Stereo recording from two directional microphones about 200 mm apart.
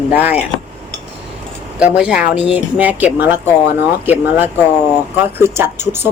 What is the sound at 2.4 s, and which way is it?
Speech, 30° left (ahead or behind).